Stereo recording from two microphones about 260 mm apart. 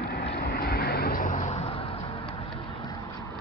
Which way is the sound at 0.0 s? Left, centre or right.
Left.